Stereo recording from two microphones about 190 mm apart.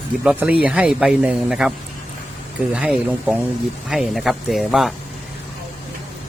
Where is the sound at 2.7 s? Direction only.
5° right (ahead or behind).